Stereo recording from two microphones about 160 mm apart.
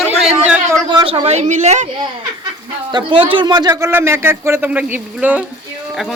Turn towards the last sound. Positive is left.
turn(degrees=-10)  # may be behind; listen again after turning